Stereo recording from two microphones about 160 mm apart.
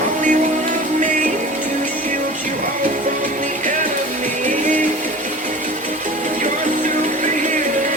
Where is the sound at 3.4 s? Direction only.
55° right (ahead or behind).